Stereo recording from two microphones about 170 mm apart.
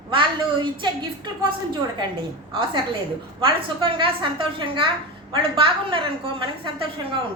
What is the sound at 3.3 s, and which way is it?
A woman's voice, 30° right (ahead or behind).